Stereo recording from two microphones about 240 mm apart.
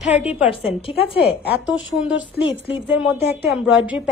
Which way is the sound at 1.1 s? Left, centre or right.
Left.